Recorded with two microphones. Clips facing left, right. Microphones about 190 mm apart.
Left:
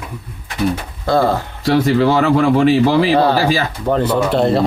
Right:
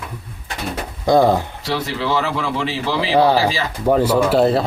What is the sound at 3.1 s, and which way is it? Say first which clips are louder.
Speech: left 1 dB; 10° right (ahead or behind).